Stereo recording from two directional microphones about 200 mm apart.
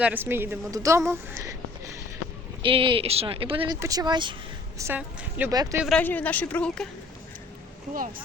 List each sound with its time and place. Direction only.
0.0 s a woman's voice: 10° right (ahead or behind)
2.6 s speech: 25° right (ahead or behind)
4.8 s a woman's voice: 10° right (ahead or behind)
5.8 s a woman's voice: 5° left (ahead or behind)
7.9 s speech: 45° right (ahead or behind)